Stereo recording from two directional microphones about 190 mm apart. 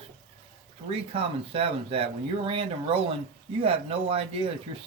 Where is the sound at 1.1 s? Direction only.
30° right (ahead or behind).